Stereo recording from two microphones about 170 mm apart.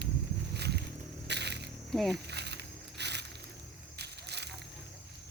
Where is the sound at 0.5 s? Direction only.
75° right (ahead or behind).